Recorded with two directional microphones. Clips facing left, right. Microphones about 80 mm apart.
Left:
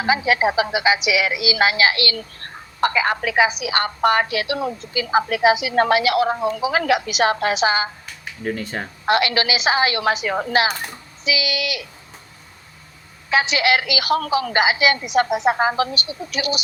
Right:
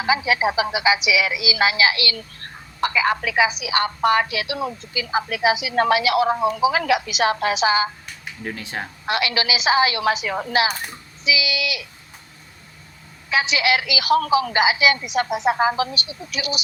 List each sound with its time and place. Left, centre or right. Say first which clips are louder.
0.1 s a woman's voice: left 2 dB; left
8.4 s speech: left 4 dB; centre
9.0 s a woman's voice: left 4 dB; left
13.3 s a woman's voice: left 2 dB; left